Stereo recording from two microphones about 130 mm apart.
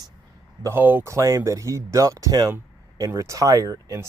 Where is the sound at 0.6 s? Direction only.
15° right (ahead or behind).